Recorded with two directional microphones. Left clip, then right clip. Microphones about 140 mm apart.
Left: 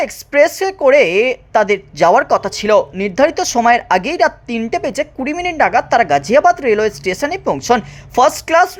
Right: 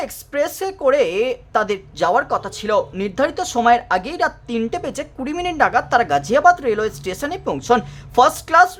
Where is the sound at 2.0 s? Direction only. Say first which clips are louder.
Left 6 dB; 30° left (ahead or behind).